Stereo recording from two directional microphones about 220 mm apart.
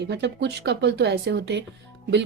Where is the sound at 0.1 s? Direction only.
50° right (ahead or behind).